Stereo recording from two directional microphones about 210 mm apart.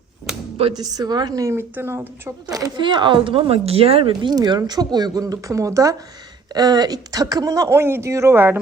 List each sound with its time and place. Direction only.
0.5 s a woman's voice: 25° right (ahead or behind)